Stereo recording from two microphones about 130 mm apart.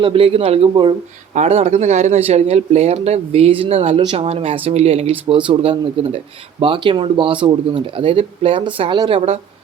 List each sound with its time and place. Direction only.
0.0 s speech: 45° right (ahead or behind)